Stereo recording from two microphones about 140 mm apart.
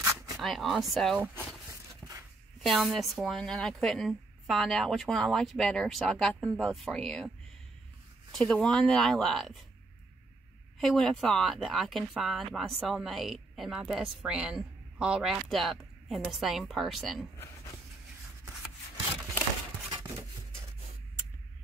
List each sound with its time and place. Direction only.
0.4 s a woman's voice: centre (ahead or behind)
1.7 s a sound: 25° right (ahead or behind)
2.6 s a woman's voice: centre (ahead or behind)
10.8 s a woman's voice: centre (ahead or behind)